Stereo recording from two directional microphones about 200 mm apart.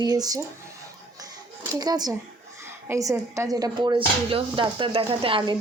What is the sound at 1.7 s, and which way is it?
Speech, 20° right (ahead or behind).